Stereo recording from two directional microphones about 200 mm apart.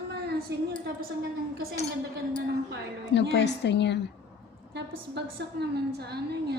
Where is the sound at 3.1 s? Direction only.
60° left (ahead or behind).